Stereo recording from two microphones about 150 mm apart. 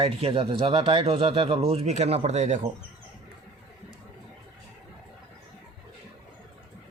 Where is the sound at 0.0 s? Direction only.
40° right (ahead or behind).